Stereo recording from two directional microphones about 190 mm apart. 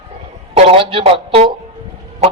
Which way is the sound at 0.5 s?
30° right (ahead or behind).